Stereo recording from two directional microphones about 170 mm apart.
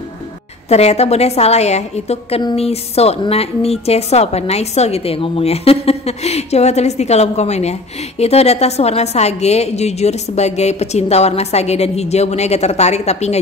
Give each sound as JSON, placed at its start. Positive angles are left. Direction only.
{"t": 0.7, "sound": "a woman's voice", "side_deg": 40}